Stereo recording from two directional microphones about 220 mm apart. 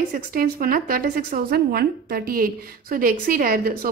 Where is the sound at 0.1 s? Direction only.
40° right (ahead or behind).